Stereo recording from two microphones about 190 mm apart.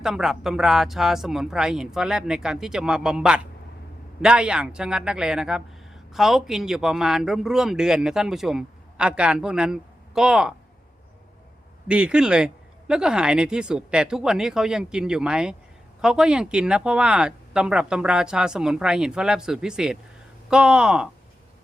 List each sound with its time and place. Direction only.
0.0 s speech: centre (ahead or behind)
11.9 s speech: 5° right (ahead or behind)